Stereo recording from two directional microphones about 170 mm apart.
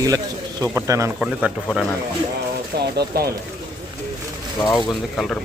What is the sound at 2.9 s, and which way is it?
Speech, 70° right (ahead or behind).